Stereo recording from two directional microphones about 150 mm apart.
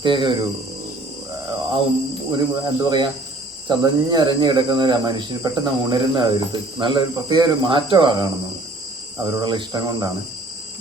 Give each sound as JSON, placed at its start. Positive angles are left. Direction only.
{"t": 0.0, "sound": "speech", "side_deg": -30}
{"t": 2.3, "sound": "speech", "side_deg": -30}